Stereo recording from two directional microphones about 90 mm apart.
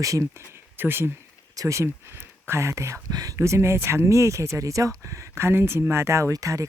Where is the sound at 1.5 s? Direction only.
35° right (ahead or behind).